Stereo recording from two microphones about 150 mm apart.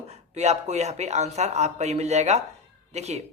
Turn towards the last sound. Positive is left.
turn(degrees=-45)  # may be behind; listen again after turning